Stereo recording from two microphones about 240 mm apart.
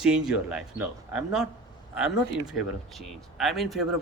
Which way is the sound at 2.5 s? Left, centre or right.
Centre.